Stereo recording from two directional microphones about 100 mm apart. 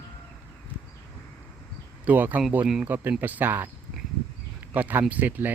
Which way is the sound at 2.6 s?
5° right (ahead or behind).